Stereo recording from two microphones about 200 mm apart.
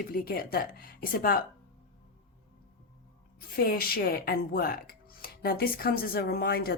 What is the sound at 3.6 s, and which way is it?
Speech, 45° left (ahead or behind).